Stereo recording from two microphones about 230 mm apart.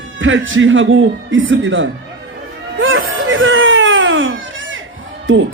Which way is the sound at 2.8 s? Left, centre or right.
Right.